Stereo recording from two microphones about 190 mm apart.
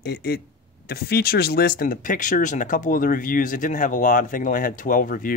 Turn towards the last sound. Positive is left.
turn(degrees=45)  # may be behind; listen again after turning